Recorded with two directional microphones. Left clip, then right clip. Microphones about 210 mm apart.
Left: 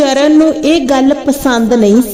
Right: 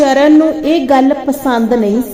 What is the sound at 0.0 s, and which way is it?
A woman's voice, 40° left (ahead or behind).